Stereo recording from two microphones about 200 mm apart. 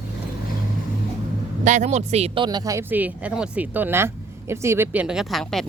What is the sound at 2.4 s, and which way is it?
Speech, 20° right (ahead or behind).